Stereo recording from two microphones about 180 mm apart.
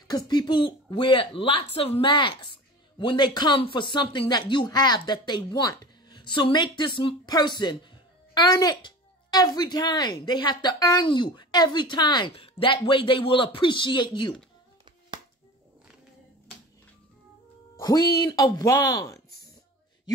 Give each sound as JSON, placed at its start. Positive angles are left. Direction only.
{"t": 0.1, "sound": "speech", "side_deg": 20}
{"t": 17.7, "sound": "speech", "side_deg": 20}